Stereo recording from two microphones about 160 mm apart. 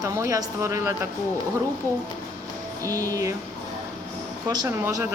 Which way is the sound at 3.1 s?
20° right (ahead or behind).